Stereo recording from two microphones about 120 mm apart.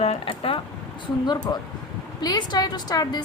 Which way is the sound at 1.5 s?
35° left (ahead or behind).